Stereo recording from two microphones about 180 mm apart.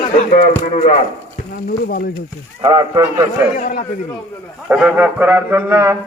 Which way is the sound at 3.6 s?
45° left (ahead or behind).